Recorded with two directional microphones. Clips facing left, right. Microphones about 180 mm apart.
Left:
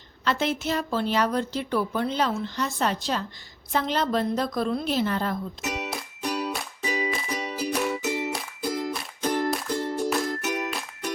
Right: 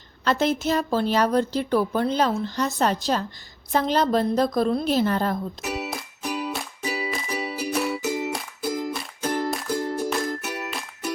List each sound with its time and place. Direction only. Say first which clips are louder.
0.3 s a woman's voice: right 4 dB; 40° right (ahead or behind)
5.6 s music: right 2 dB; 5° right (ahead or behind)